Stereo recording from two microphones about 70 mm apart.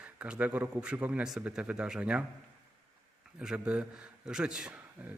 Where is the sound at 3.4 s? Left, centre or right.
Centre.